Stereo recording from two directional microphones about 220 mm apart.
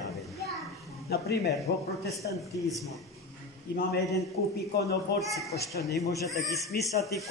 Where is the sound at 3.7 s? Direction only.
45° left (ahead or behind).